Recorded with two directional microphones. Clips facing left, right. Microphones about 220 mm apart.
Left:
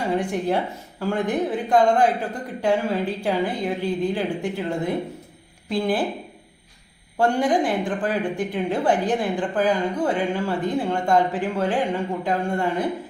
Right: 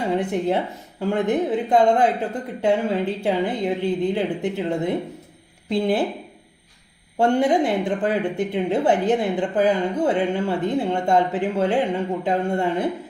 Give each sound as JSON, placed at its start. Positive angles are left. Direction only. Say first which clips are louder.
{"t": 0.2, "sound": "a woman's voice", "louder": "right 1 dB", "side_deg": -20}
{"t": 7.2, "sound": "a woman's voice", "louder": "right 2 dB", "side_deg": -25}